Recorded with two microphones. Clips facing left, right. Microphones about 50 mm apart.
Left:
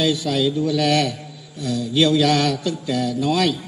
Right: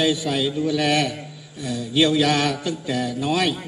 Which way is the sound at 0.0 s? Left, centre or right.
Centre.